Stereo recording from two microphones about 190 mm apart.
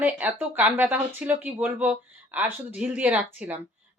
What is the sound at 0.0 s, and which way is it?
Speech, 10° right (ahead or behind).